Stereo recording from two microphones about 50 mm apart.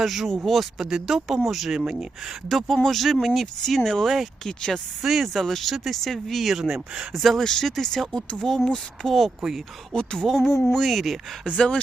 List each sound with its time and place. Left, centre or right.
0.0 s speech: centre
1.8 s speech: centre
2.5 s speech: centre
5.0 s speech: centre
7.1 s speech: centre
9.4 s speech: centre
9.9 s speech: centre
11.4 s speech: centre